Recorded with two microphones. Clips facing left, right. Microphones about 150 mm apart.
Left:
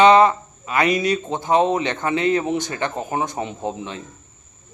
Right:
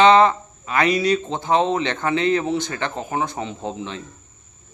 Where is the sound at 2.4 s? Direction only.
15° left (ahead or behind).